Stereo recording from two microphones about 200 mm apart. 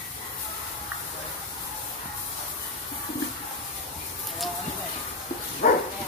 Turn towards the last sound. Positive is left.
turn(degrees=35)  # may be behind; listen again after turning